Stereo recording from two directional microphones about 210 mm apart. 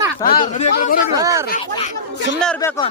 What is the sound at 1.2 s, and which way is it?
Speech, 15° right (ahead or behind).